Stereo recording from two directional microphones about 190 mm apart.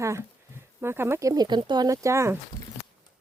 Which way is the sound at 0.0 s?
15° right (ahead or behind).